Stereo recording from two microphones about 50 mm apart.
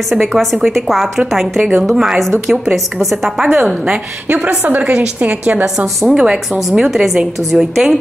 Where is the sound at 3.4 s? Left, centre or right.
Right.